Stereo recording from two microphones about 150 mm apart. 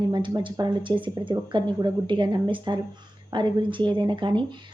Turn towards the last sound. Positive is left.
turn(degrees=-30)  # may be behind; listen again after turning